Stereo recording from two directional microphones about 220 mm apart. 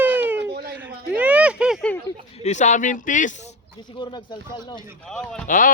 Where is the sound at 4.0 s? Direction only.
20° left (ahead or behind).